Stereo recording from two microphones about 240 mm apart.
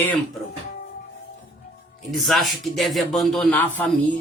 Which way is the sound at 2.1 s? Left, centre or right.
Centre.